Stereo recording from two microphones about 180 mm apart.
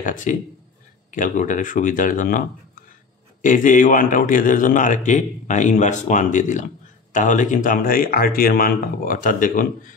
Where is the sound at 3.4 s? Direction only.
45° left (ahead or behind).